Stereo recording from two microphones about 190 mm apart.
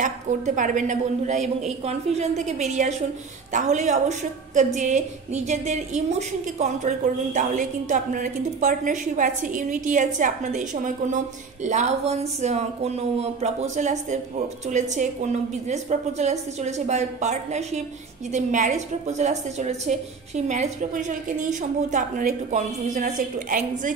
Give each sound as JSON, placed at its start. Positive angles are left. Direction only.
{"t": 0.6, "sound": "a woman's voice", "side_deg": -40}